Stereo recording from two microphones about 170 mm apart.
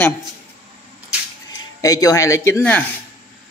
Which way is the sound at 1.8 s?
20° left (ahead or behind).